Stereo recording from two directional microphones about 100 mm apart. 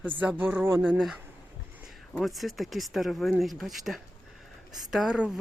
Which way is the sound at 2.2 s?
Centre (ahead or behind).